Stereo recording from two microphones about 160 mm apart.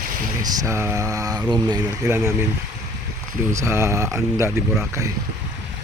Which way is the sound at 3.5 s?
20° right (ahead or behind).